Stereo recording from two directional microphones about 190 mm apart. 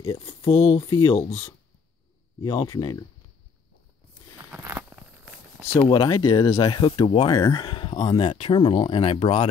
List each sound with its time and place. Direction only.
0.0 s speech: 15° left (ahead or behind)
0.5 s speech: 30° left (ahead or behind)
2.4 s speech: 30° left (ahead or behind)
4.5 s a sound: 10° right (ahead or behind)
5.6 s speech: 10° left (ahead or behind)
5.9 s speech: 25° left (ahead or behind)